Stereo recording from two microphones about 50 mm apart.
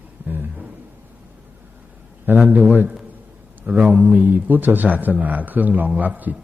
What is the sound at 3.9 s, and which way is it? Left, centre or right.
A man's voice, right.